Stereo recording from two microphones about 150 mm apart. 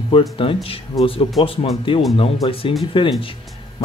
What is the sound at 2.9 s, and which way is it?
Speech, 35° left (ahead or behind).